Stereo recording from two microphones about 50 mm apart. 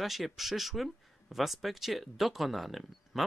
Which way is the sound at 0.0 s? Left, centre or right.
Centre.